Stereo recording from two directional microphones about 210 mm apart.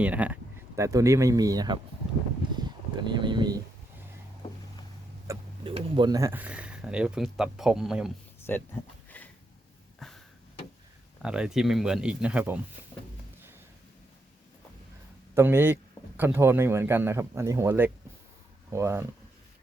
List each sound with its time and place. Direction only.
0.0 s speech: 5° right (ahead or behind)
5.3 s a sound: 15° right (ahead or behind)
5.6 s speech: 25° right (ahead or behind); by 8.1 s centre (ahead or behind)
8.4 s speech: 10° left (ahead or behind)
10.0 s a sound: centre (ahead or behind)
11.2 s speech: 5° right (ahead or behind)
15.4 s speech: 10° right (ahead or behind)